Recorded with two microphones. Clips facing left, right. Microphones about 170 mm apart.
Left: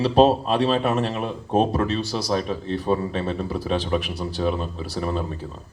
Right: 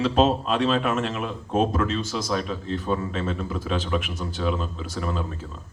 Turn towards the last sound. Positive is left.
turn(degrees=35)  # may be behind; listen again after turning